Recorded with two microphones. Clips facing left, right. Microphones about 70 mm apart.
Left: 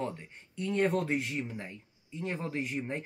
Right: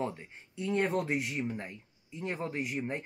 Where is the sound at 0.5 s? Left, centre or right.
Centre.